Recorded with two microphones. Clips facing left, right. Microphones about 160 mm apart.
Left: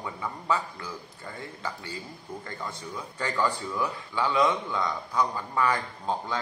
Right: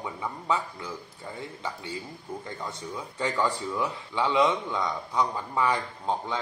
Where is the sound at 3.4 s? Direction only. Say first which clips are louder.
Even; 20° right (ahead or behind).